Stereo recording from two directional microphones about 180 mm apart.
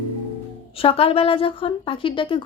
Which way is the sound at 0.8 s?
30° left (ahead or behind).